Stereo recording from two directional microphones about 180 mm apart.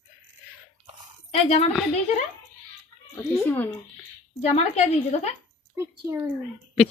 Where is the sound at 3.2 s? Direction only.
10° left (ahead or behind).